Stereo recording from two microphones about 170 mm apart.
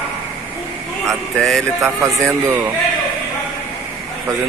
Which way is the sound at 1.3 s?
Centre (ahead or behind).